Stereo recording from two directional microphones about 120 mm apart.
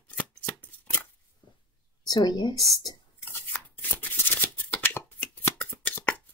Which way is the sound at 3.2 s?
15° left (ahead or behind).